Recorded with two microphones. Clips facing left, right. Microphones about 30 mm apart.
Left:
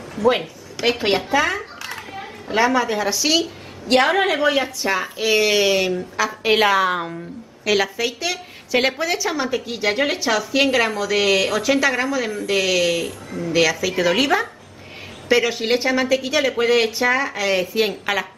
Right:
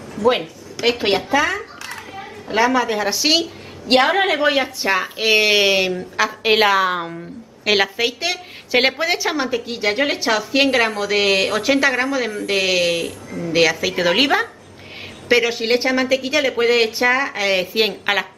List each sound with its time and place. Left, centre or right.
0.3 s a woman's voice: centre
4.0 s a woman's voice: centre
4.4 s a woman's voice: right; by 7.2 s centre
7.6 s a woman's voice: right
9.5 s a woman's voice: centre